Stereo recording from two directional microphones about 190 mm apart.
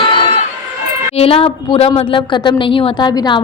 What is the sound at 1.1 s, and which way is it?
A woman's voice, 30° left (ahead or behind).